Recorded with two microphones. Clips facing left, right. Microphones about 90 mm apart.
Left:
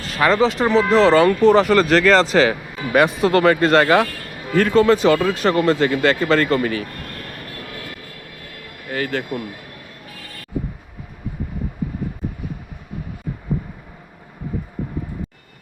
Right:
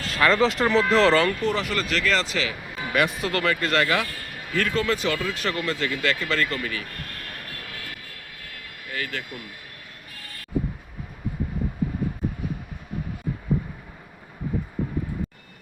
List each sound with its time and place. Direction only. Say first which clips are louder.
0.2 s speech: left 4 dB; 25° left (ahead or behind)
0.8 s speech: left 5 dB; 5° left (ahead or behind)
1.4 s speech: left 12 dB; 30° left (ahead or behind)
8.9 s speech: left 9 dB; 40° left (ahead or behind)